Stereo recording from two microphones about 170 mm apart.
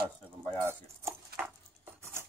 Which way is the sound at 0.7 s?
15° right (ahead or behind).